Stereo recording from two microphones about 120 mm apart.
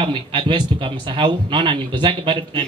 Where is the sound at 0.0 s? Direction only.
45° right (ahead or behind).